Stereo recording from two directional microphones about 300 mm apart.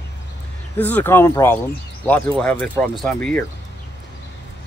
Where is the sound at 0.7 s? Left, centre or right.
Centre.